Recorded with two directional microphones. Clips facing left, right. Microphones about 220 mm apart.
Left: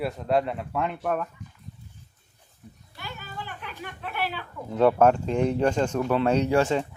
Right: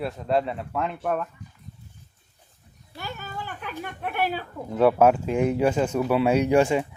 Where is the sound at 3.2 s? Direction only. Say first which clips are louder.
Right 3 dB; 45° right (ahead or behind).